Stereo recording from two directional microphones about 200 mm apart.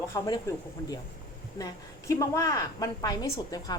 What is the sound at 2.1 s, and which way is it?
A woman's voice, 15° left (ahead or behind).